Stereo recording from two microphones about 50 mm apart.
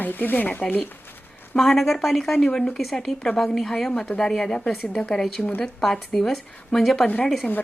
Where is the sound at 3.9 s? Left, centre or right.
Left; by 7.0 s centre.